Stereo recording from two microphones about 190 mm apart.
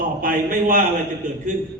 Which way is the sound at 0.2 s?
45° right (ahead or behind).